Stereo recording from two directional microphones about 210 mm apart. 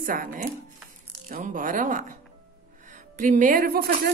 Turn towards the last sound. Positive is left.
turn(degrees=-45)  # may be behind; listen again after turning